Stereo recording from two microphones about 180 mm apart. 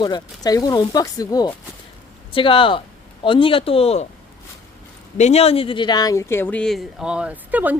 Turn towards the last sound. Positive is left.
turn(degrees=-10)  # may be behind; listen again after turning